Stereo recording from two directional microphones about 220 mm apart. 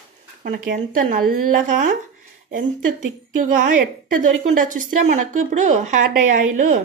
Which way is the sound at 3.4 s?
35° right (ahead or behind).